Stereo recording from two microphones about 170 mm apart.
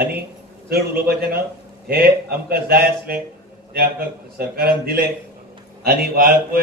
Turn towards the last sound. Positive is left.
turn(degrees=-60)  # may be behind; listen again after turning